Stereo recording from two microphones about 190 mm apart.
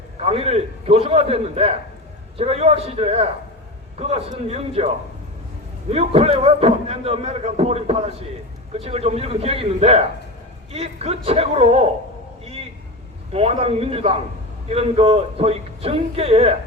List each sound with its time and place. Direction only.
0.2 s a man's voice: 30° right (ahead or behind)
5.9 s a man's voice: 30° right (ahead or behind)
13.3 s a man's voice: 30° right (ahead or behind)